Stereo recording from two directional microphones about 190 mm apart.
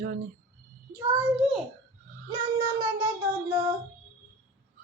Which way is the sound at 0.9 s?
10° right (ahead or behind).